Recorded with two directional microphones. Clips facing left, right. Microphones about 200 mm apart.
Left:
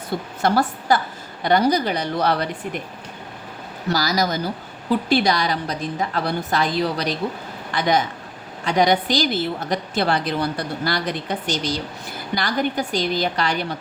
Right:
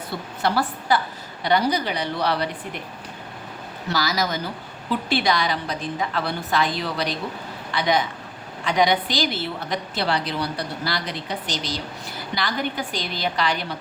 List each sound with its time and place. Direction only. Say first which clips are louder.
0.1 s a woman's voice: left 4 dB; 45° left (ahead or behind)
3.9 s a woman's voice: left 3 dB; 40° left (ahead or behind)